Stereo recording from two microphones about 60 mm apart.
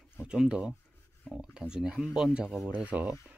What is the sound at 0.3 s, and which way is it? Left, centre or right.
Speech, centre.